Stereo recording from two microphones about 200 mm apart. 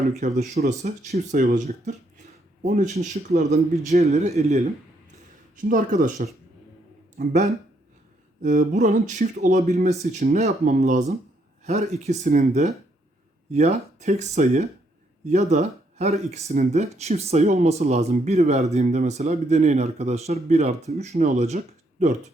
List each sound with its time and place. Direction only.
0.2 s speech: 35° right (ahead or behind)
5.6 s speech: 40° right (ahead or behind)